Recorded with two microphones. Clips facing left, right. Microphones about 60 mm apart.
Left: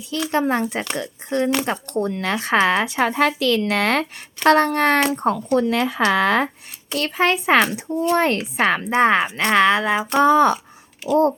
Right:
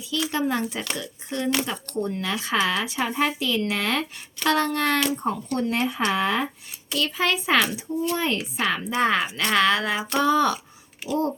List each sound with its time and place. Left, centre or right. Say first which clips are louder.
0.1 s a woman's voice: left 4 dB; left
2.0 s speech: left 3 dB; left
2.2 s speech: left 7 dB; left
4.4 s speech: left 7 dB; left
5.1 s speech: left 7 dB; left
6.9 s a woman's voice: left 4 dB; left
8.1 s a woman's voice: left 7 dB; left
11.1 s speech: left 8 dB; left